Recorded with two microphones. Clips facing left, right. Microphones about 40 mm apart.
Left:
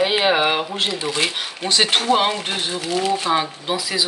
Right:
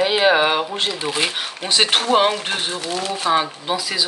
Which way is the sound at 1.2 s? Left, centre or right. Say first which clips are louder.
Even; centre.